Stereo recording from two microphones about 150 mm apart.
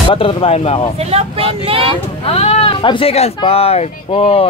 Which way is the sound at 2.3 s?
40° left (ahead or behind).